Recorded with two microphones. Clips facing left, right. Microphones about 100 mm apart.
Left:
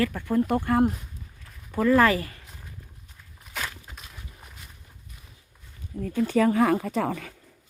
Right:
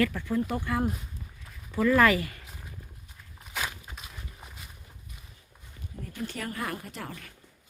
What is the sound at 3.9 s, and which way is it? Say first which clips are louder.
Clip-clop: even; 5° right (ahead or behind).